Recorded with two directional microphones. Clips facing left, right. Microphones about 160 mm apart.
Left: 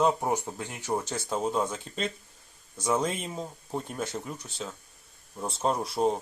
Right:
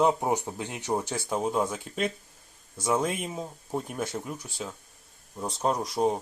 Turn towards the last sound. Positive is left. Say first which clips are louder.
# right 1 dB
turn(degrees=5)  # may be behind; listen again after turning